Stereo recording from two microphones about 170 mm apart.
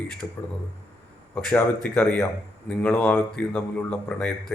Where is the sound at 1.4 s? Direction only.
5° left (ahead or behind).